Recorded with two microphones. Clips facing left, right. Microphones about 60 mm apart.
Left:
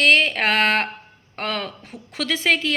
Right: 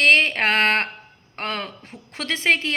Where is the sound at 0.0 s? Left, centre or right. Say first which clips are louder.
Even; right.